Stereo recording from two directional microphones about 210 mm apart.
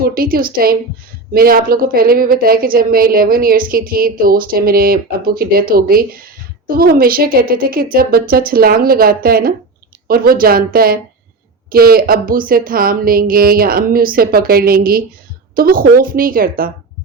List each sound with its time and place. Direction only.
0.0 s speech: 45° right (ahead or behind)